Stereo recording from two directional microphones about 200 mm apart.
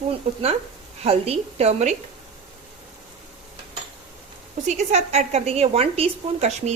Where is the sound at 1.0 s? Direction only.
30° right (ahead or behind).